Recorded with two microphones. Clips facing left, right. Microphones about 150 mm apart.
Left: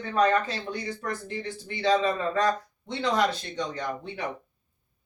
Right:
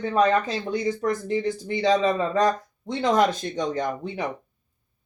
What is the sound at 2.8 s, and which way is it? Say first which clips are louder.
Speech: right 5 dB; 45° right (ahead or behind).